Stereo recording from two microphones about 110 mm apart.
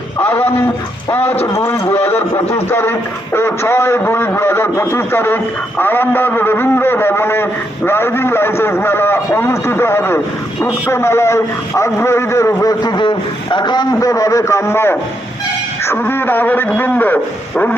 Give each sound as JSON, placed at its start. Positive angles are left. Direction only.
{"t": 0.2, "sound": "a sound", "side_deg": 20}
{"t": 1.5, "sound": "a man's voice", "side_deg": 25}
{"t": 12.8, "sound": "a man's voice", "side_deg": 40}
{"t": 14.0, "sound": "a man's voice", "side_deg": 30}